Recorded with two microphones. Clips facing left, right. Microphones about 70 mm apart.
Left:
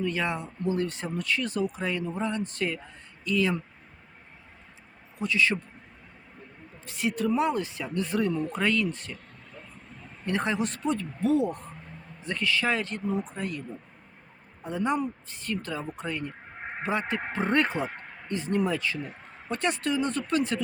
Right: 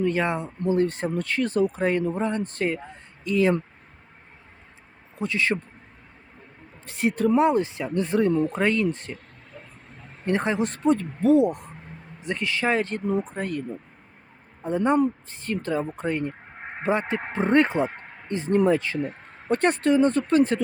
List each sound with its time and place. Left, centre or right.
0.0 s speech: right
5.1 s speech: right
6.8 s speech: right
8.3 s speech: right
8.5 s speech: right
10.2 s speech: right
11.3 s speech: centre; by 13.7 s right
14.6 s speech: right
18.9 s speech: right